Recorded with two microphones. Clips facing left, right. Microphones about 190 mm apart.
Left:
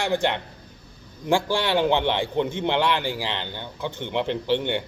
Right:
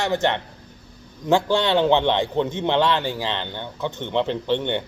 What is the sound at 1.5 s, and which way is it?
Speech, 20° right (ahead or behind).